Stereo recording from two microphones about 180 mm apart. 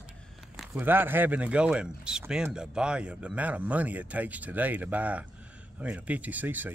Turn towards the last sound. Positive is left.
turn(degrees=-10)  # may be behind; listen again after turning